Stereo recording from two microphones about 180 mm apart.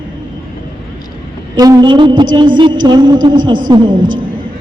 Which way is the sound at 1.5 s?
20° right (ahead or behind).